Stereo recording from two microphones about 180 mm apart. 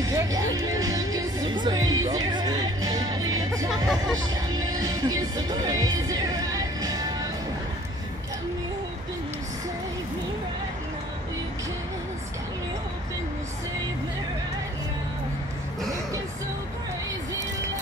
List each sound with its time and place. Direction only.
0.1 s music: 20° right (ahead or behind)